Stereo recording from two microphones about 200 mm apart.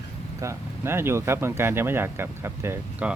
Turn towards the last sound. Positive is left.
turn(degrees=-10)  # may be behind; listen again after turning